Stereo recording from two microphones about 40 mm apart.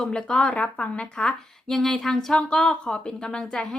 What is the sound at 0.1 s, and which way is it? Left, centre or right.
Speech, left.